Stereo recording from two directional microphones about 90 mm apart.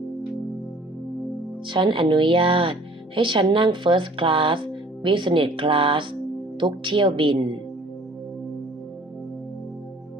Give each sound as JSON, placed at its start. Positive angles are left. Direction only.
{"t": 1.6, "sound": "speech", "side_deg": -65}
{"t": 6.6, "sound": "speech", "side_deg": -65}